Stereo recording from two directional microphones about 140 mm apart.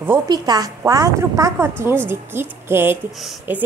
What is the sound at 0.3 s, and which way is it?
Speech, 25° right (ahead or behind).